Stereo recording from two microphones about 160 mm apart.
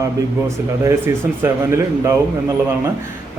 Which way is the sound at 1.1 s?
15° right (ahead or behind).